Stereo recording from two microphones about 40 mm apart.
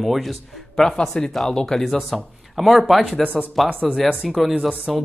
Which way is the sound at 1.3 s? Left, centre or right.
Centre.